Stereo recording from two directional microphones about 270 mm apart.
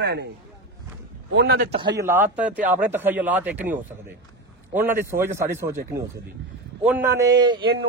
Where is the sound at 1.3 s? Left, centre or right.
Right.